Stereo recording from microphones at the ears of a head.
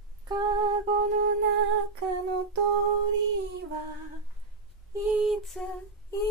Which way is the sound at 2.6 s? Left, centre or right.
Right.